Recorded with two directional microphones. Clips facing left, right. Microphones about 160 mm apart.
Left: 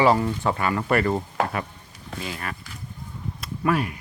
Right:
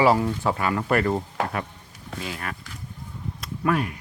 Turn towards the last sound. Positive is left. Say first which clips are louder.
# even
turn(degrees=5)  # may be behind; listen again after turning